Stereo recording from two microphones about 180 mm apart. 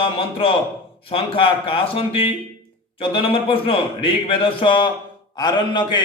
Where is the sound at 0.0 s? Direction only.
30° left (ahead or behind).